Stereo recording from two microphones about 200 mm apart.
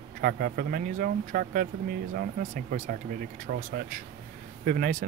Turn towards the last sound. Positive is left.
turn(degrees=-40)  # may be behind; listen again after turning